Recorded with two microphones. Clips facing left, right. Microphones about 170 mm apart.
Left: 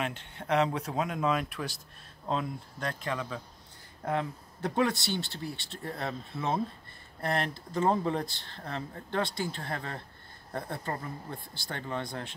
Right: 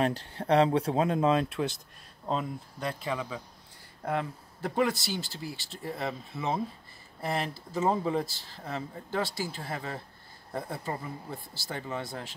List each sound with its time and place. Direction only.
0.0 s speech: 35° right (ahead or behind)
2.2 s speech: 5° right (ahead or behind)